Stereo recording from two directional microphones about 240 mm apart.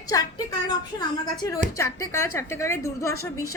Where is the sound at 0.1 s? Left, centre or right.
Centre.